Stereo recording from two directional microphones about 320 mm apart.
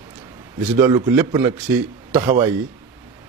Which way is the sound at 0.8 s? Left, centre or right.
Centre.